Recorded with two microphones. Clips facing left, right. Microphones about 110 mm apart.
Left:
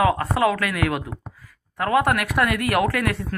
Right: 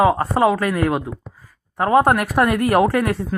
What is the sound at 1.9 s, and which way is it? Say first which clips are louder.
Speech: right 5 dB; 40° right (ahead or behind).